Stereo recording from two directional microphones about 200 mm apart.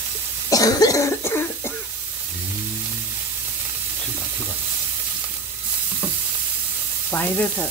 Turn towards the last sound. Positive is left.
turn(degrees=10)  # may be behind; listen again after turning